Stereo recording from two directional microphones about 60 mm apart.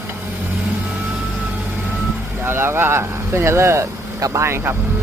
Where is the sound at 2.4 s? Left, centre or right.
Right.